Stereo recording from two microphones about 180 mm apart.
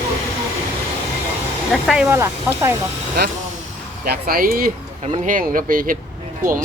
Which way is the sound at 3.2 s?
65° right (ahead or behind).